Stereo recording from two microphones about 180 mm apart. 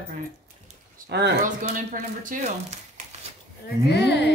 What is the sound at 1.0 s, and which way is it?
Speech, 65° right (ahead or behind).